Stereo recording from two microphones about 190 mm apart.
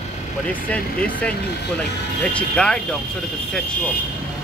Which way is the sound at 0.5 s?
5° left (ahead or behind).